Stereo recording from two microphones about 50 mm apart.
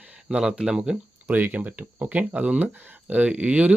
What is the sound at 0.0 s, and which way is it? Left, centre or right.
Speech, right.